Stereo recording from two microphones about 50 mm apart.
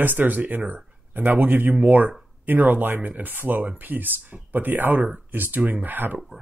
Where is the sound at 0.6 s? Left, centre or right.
Right.